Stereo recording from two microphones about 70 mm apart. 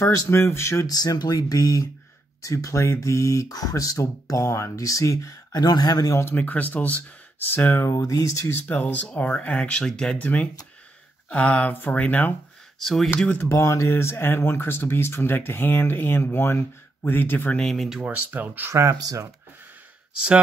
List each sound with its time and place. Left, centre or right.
0.0 s speech: left
0.8 s speech: left
6.3 s speech: left
7.9 s speech: left
8.6 s speech: left
12.8 s speech: centre
13.5 s speech: left
17.6 s speech: centre
18.0 s speech: right
18.7 s speech: right